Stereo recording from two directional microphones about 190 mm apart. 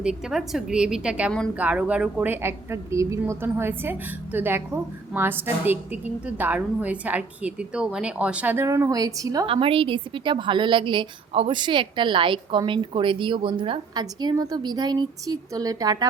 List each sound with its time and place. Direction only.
0.0 s a woman's voice: 5° right (ahead or behind)
9.5 s a woman's voice: 30° right (ahead or behind)